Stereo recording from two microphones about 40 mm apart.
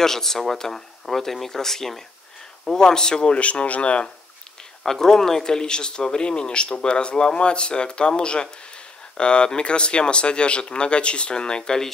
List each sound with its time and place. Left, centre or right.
0.0 s speech: centre; by 4.1 s left
4.8 s speech: centre